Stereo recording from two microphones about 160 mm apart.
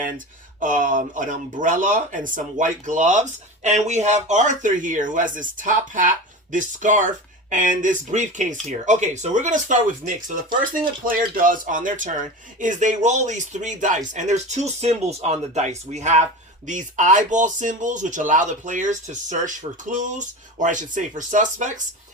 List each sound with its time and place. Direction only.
0.6 s speech: 55° right (ahead or behind)